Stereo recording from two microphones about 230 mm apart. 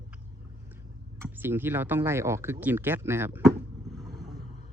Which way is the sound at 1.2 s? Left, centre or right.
Centre.